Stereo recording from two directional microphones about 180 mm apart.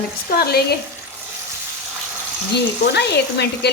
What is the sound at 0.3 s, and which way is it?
Frying, 60° left (ahead or behind).